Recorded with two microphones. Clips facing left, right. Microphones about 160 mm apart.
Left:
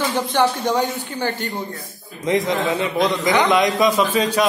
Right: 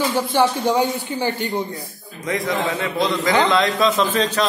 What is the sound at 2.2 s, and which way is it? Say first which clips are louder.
A man's voice: left 3 dB; 20° left (ahead or behind).